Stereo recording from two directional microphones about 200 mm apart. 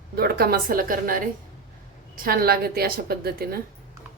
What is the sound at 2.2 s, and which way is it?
A woman's voice, 50° right (ahead or behind).